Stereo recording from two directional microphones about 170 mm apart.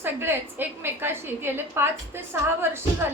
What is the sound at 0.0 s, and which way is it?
A woman's voice, 15° right (ahead or behind).